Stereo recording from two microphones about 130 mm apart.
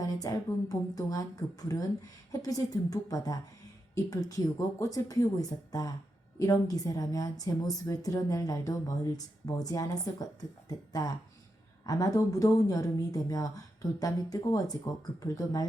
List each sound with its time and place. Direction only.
0.0 s a woman's voice: 25° left (ahead or behind)